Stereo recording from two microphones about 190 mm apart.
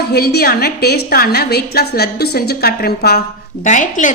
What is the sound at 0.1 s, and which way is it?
A woman's voice, 55° left (ahead or behind).